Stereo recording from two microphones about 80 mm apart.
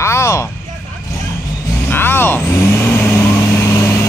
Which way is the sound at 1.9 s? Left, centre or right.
Left.